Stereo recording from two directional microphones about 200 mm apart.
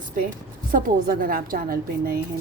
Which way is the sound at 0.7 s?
45° right (ahead or behind).